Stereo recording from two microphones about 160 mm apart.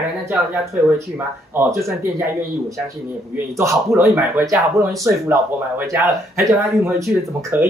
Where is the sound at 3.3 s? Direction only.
15° right (ahead or behind).